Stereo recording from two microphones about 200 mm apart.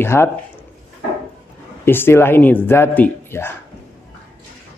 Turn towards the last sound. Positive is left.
turn(degrees=10)  # may be behind; listen again after turning